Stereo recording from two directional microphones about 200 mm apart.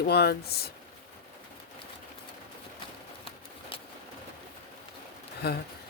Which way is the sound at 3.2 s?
25° left (ahead or behind).